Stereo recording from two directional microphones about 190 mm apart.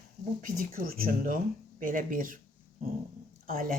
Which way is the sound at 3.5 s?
45° right (ahead or behind).